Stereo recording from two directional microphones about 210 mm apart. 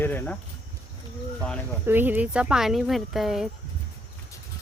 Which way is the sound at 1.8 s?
10° right (ahead or behind).